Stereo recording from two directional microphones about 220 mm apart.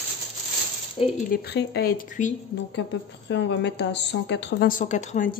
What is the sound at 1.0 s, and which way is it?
Speech, 25° left (ahead or behind).